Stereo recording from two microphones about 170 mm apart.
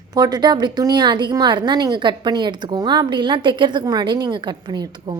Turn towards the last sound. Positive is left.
turn(degrees=-25)  # may be behind; listen again after turning